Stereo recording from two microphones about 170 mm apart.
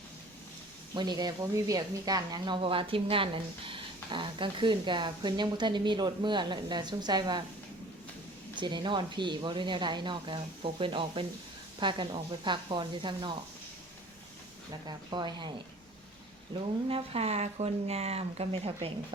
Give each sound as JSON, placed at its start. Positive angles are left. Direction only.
{"t": 0.9, "sound": "speech", "side_deg": -25}
{"t": 8.5, "sound": "speech", "side_deg": -25}
{"t": 14.7, "sound": "speech", "side_deg": -25}
{"t": 16.6, "sound": "speech", "side_deg": -35}